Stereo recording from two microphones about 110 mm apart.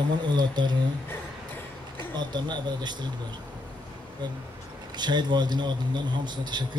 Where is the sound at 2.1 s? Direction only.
40° right (ahead or behind).